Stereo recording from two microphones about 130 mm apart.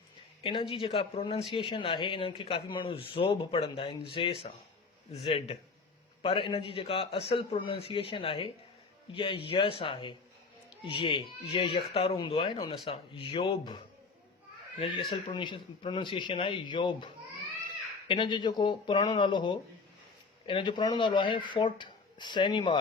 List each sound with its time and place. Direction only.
0.4 s speech: 40° left (ahead or behind)
14.8 s speech: 40° left (ahead or behind)
18.1 s speech: 40° left (ahead or behind)